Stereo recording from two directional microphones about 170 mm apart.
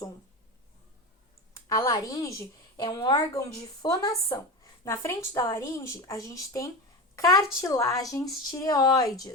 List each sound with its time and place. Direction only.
1.7 s a woman's voice: 20° left (ahead or behind)